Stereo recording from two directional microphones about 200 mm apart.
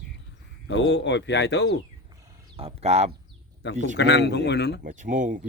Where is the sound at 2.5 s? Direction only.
30° right (ahead or behind).